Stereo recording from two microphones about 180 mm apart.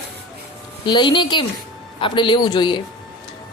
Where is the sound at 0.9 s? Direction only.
25° left (ahead or behind).